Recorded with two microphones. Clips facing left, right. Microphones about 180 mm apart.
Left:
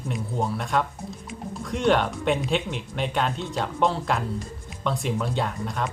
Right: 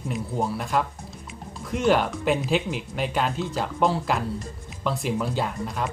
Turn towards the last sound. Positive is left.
turn(degrees=0)  # may be behind; listen again after turning